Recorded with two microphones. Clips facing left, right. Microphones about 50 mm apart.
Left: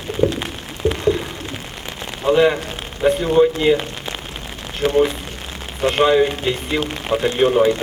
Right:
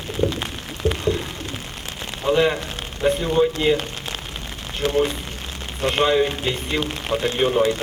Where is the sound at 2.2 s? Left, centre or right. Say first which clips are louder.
Left 4 dB; centre.